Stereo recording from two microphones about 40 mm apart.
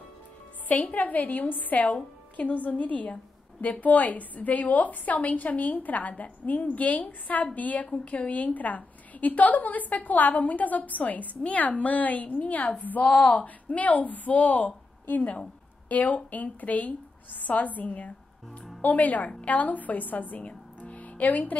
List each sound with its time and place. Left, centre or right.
0.7 s a woman's voice: left